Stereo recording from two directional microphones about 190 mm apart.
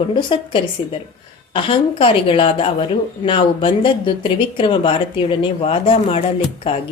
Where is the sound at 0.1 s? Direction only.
25° left (ahead or behind).